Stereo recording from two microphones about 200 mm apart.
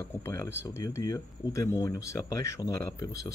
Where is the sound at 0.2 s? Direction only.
15° left (ahead or behind).